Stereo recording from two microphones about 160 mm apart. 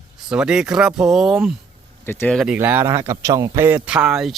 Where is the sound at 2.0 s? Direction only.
15° left (ahead or behind).